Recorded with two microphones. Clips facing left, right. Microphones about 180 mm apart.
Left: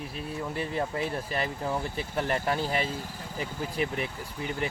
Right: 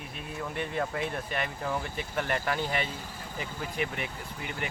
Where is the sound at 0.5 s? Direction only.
30° left (ahead or behind).